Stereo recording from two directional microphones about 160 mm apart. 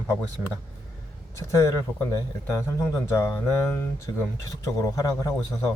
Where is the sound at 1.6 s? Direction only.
20° left (ahead or behind).